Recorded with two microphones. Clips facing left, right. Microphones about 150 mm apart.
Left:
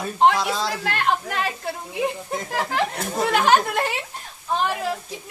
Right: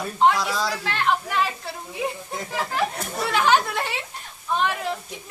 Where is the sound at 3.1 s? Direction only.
45° left (ahead or behind).